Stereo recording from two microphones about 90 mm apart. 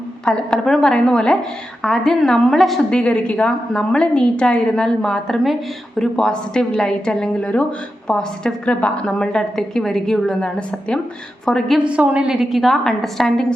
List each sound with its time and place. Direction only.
0.3 s a woman's voice: 10° left (ahead or behind)
11.8 s a woman's voice: 10° right (ahead or behind); by 13.5 s 5° left (ahead or behind)